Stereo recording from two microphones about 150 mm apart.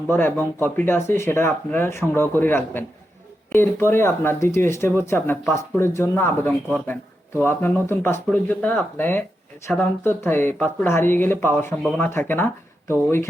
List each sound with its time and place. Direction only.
0.1 s speech: 15° left (ahead or behind)